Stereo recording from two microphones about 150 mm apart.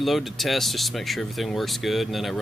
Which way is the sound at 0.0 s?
Centre (ahead or behind).